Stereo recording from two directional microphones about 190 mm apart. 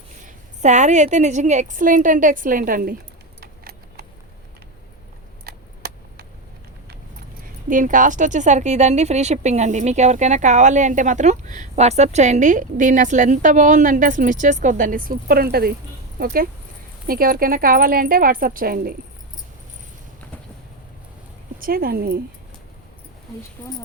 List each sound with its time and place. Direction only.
0.3 s a woman's voice: 40° right (ahead or behind)
3.4 s keys jangling: 55° right (ahead or behind)
5.5 s a sound: 50° right (ahead or behind)
7.7 s a woman's voice: 45° right (ahead or behind)
21.6 s a woman's voice: 50° right (ahead or behind)